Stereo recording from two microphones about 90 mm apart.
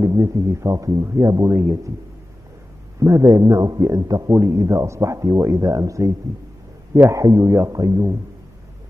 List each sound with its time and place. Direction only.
0.0 s a man's voice: 35° right (ahead or behind)
3.0 s a man's voice: 35° right (ahead or behind)
6.9 s a man's voice: 25° right (ahead or behind)